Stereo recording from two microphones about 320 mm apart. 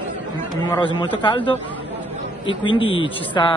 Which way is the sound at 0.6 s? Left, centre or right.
Centre.